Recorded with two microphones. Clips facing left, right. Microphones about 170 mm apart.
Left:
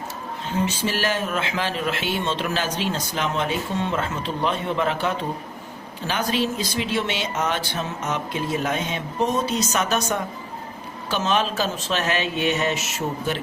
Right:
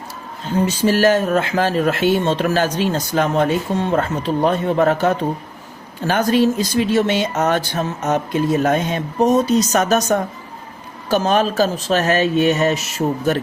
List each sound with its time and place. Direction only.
0.6 s speech: 40° right (ahead or behind)